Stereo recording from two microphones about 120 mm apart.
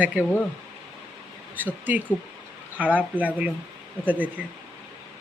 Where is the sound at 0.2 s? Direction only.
15° right (ahead or behind).